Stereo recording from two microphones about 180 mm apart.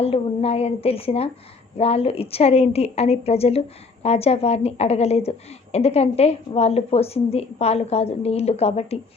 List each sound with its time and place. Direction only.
0.0 s a woman's voice: 35° left (ahead or behind)